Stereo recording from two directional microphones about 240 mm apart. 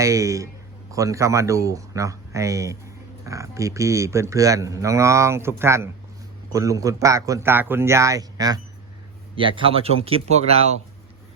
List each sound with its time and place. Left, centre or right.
0.0 s a man's voice: centre